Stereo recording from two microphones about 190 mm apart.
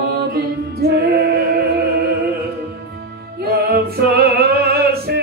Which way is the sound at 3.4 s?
55° right (ahead or behind).